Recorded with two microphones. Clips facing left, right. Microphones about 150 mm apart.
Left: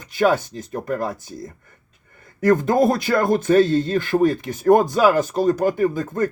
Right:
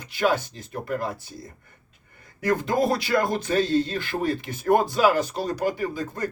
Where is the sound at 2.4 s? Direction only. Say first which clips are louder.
Left 6 dB; 45° left (ahead or behind).